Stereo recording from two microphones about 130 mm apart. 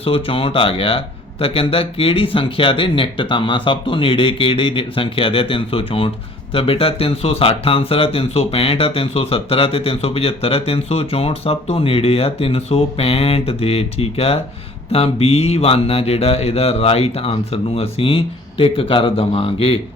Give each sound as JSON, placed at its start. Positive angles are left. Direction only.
{"t": 0.0, "sound": "speech", "side_deg": 45}